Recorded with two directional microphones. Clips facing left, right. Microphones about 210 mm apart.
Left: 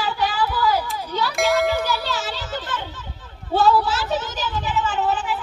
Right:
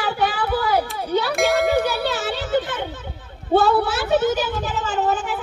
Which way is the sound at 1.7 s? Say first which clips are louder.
Right 4 dB; 60° right (ahead or behind).